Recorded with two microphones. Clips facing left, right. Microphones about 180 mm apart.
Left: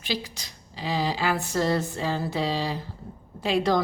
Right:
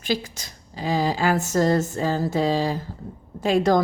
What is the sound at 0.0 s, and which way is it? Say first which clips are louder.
A woman's voice: right 5 dB; 45° right (ahead or behind).